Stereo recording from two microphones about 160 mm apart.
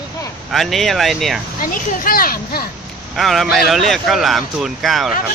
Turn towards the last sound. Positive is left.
turn(degrees=0)  # may be behind; listen again after turning